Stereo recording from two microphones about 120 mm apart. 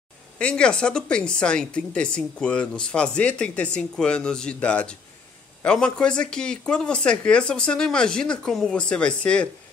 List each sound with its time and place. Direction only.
0.4 s speech: 10° left (ahead or behind)